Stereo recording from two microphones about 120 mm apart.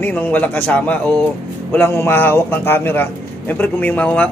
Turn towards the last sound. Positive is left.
turn(degrees=15)  # may be behind; listen again after turning